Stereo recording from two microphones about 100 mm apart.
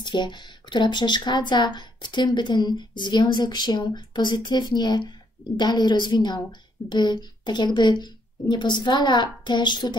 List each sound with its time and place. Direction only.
0.0 s speech: 50° left (ahead or behind)